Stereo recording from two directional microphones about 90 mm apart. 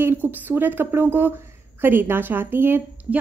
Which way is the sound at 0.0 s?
20° right (ahead or behind).